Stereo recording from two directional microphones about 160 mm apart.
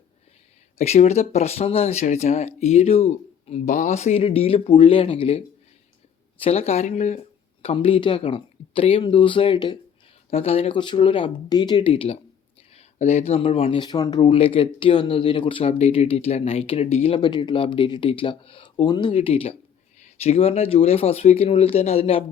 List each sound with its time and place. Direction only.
0.8 s speech: 45° left (ahead or behind)
6.4 s speech: 40° left (ahead or behind)
7.6 s speech: 35° left (ahead or behind)
17.2 s speech: 30° left (ahead or behind)